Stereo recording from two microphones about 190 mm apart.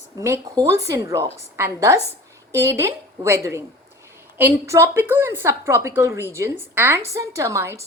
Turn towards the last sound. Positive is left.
turn(degrees=-15)  # may be behind; listen again after turning